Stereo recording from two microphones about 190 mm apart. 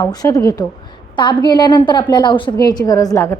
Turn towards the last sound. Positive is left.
turn(degrees=15)  # may be behind; listen again after turning